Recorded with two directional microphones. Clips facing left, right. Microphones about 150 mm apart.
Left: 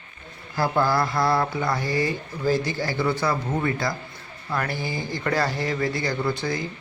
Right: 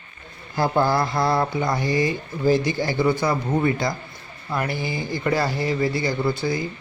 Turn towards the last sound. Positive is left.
turn(degrees=-10)  # may be behind; listen again after turning